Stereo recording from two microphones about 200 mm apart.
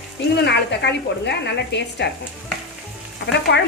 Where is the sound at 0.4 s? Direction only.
55° left (ahead or behind).